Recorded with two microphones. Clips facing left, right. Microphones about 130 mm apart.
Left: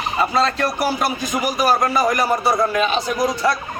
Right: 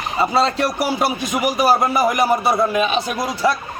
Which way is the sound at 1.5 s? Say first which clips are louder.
Right 1 dB; 15° right (ahead or behind).